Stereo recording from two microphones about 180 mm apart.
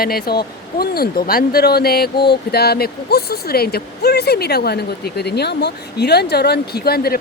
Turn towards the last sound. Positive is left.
turn(degrees=60)  # may be behind; listen again after turning